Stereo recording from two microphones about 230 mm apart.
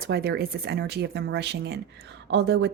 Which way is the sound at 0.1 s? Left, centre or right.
Right.